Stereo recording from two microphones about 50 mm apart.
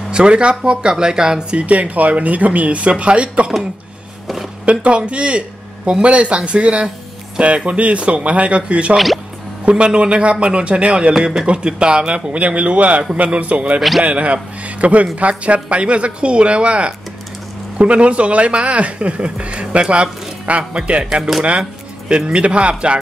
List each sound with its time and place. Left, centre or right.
0.1 s speech: centre
4.6 s speech: right
8.9 s speech: centre
9.7 s speech: right
13.7 s speech: centre
14.0 s speech: right
21.2 s speech: centre
22.1 s speech: right